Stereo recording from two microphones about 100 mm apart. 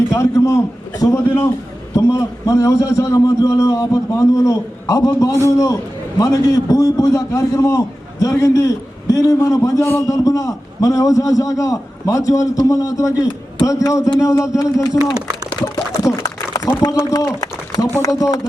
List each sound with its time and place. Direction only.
0.1 s a man's voice: 30° left (ahead or behind)
15.6 s a sound: 35° left (ahead or behind)
17.1 s speech: 35° left (ahead or behind)